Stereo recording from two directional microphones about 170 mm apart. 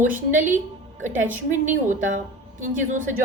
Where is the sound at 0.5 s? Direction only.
50° right (ahead or behind).